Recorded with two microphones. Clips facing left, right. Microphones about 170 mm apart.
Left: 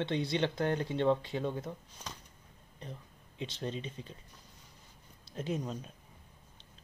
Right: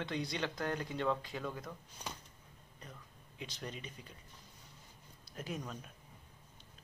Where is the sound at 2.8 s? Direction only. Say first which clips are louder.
Left 7 dB; 30° left (ahead or behind).